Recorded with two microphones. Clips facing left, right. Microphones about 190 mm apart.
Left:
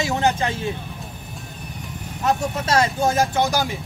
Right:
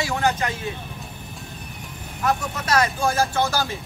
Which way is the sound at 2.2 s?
25° left (ahead or behind).